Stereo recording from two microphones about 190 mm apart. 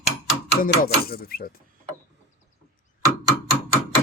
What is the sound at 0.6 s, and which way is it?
Speech, 50° left (ahead or behind).